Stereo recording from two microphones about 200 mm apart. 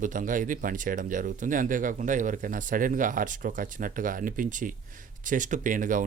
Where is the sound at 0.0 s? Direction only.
40° right (ahead or behind).